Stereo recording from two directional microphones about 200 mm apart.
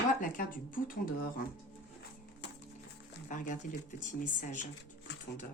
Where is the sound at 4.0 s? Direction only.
40° left (ahead or behind).